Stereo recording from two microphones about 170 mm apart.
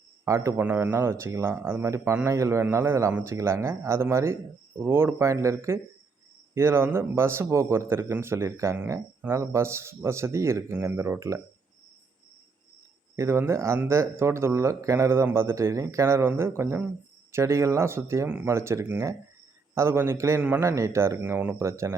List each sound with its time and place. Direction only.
0.3 s a man's voice: 15° right (ahead or behind)
13.1 s a man's voice: 15° right (ahead or behind)